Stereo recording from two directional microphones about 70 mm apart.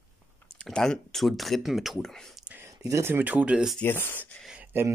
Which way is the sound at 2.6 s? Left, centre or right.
Right.